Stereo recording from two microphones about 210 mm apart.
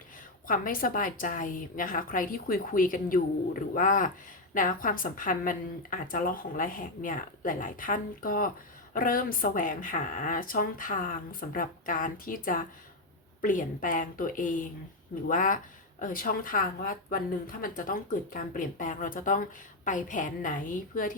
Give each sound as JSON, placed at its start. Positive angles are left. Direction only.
{"t": 0.4, "sound": "speech", "side_deg": 40}